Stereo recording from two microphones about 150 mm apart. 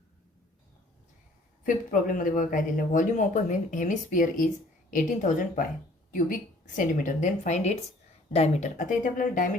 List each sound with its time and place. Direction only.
1.6 s speech: 65° left (ahead or behind)
6.7 s a woman's voice: 60° left (ahead or behind)